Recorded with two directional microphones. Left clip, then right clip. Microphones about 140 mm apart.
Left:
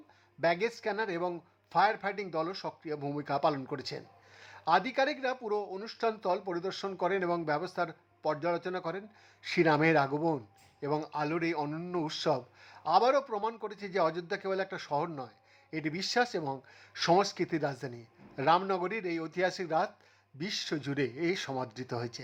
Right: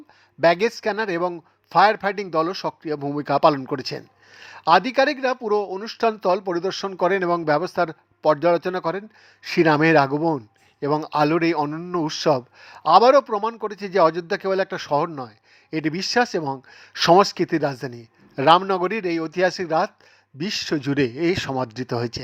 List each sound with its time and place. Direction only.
0.4 s speech: 45° right (ahead or behind)
11.1 s speech: 50° right (ahead or behind)
11.7 s speech: 30° right (ahead or behind)